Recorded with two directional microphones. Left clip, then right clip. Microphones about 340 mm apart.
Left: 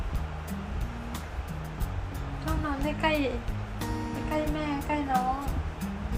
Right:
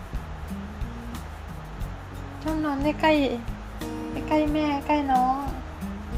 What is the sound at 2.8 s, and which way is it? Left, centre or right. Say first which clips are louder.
Speech: right 6 dB; right.